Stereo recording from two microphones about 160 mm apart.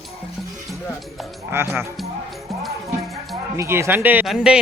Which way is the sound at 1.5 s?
15° right (ahead or behind).